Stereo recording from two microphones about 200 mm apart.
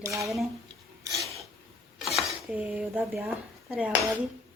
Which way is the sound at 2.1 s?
5° right (ahead or behind).